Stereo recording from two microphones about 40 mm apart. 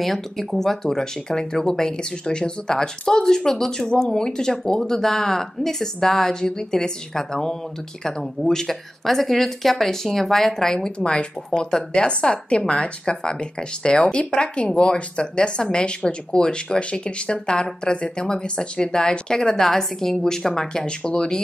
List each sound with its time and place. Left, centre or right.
0.0 s speech: centre
10.7 s speech: centre